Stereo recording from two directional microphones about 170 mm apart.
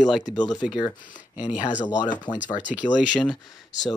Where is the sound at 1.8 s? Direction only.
25° left (ahead or behind).